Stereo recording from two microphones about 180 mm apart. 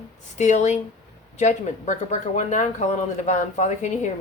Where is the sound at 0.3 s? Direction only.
40° left (ahead or behind).